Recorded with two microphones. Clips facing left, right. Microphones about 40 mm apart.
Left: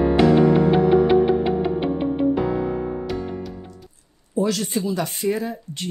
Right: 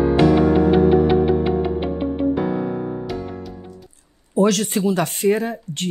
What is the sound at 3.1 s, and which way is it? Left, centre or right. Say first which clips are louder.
Music: left 1 dB; centre.